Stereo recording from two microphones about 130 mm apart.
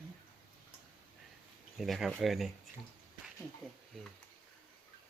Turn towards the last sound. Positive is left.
turn(degrees=0)  # may be behind; listen again after turning